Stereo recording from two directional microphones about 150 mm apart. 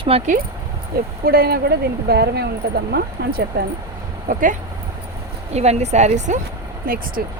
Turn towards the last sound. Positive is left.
turn(degrees=-70)  # may be behind; listen again after turning